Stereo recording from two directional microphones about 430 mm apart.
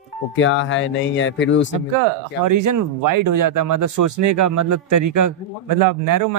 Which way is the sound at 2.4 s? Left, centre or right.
Right.